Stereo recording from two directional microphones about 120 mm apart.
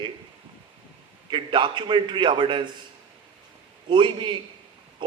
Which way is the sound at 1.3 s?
40° right (ahead or behind).